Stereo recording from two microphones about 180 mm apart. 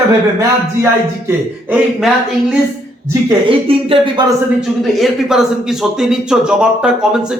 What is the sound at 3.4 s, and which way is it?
Speech, 30° right (ahead or behind).